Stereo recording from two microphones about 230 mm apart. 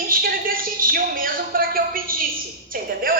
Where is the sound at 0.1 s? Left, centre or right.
Right.